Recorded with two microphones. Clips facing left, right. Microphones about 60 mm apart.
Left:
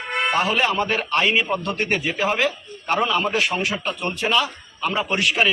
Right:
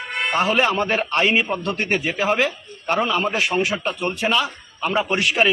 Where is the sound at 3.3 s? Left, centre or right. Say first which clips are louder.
Right 1 dB; centre.